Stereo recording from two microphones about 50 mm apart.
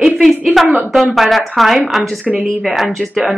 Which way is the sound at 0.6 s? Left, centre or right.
Right.